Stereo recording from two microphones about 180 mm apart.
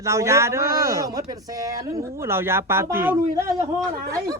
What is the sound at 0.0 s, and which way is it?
Speech, 15° right (ahead or behind).